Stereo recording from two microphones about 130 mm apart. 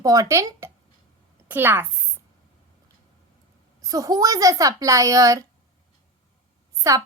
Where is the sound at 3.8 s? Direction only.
25° right (ahead or behind).